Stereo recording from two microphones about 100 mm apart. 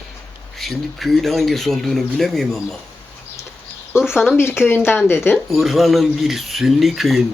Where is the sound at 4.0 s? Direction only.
5° right (ahead or behind).